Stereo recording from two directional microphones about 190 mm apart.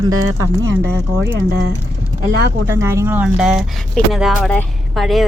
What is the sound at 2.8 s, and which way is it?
Speech, 15° right (ahead or behind).